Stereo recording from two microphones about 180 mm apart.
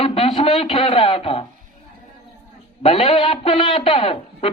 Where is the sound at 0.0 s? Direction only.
30° left (ahead or behind).